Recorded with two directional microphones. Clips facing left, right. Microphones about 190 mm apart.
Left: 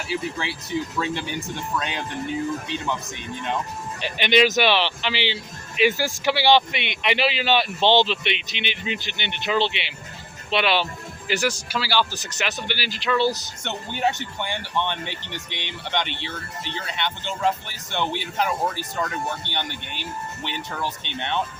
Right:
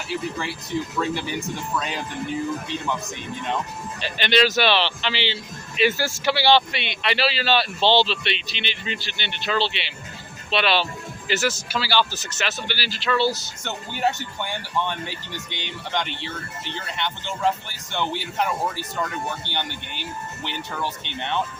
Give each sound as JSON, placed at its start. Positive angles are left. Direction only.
{"t": 0.1, "sound": "speech", "side_deg": 0}
{"t": 4.0, "sound": "a man's voice", "side_deg": 15}
{"t": 14.4, "sound": "speech", "side_deg": 0}